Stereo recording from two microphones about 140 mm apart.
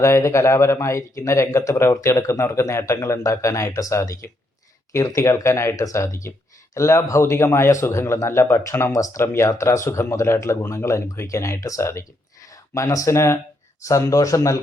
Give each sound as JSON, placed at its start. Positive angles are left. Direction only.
{"t": 0.0, "sound": "speech", "side_deg": 20}